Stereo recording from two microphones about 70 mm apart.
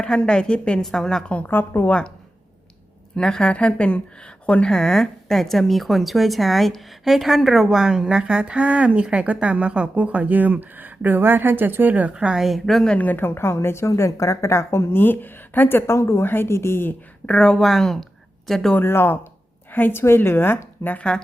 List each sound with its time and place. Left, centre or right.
0.0 s a woman's voice: centre
1.3 s a woman's voice: left
1.9 s a woman's voice: centre
3.2 s a woman's voice: centre
13.0 s a woman's voice: left
15.9 s a woman's voice: left
17.2 s speech: centre
18.8 s a woman's voice: left